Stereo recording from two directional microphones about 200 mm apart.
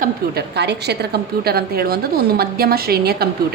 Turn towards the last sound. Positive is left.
turn(degrees=-50)  # may be behind; listen again after turning